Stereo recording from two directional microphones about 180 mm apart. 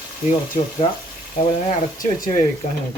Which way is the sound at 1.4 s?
50° left (ahead or behind).